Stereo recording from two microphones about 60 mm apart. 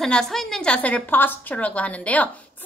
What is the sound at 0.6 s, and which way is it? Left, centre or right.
Speech, left.